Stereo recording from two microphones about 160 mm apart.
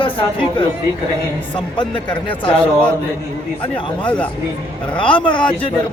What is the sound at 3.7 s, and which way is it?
Speech, 30° left (ahead or behind).